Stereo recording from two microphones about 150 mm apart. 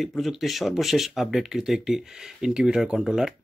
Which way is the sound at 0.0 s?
Centre (ahead or behind).